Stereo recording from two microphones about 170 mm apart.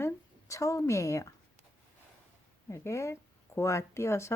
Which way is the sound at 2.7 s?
15° left (ahead or behind).